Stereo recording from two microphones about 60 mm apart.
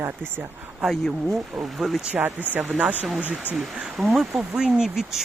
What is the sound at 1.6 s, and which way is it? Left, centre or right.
Speech, centre.